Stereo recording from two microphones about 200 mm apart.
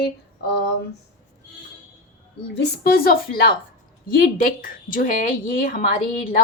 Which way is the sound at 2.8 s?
50° left (ahead or behind).